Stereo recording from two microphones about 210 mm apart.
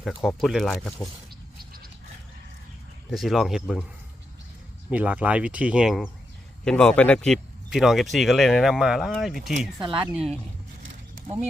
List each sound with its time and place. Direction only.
0.0 s speech: centre (ahead or behind)
3.1 s speech: centre (ahead or behind)
4.9 s speech: 5° right (ahead or behind)
9.7 s speech: 25° right (ahead or behind)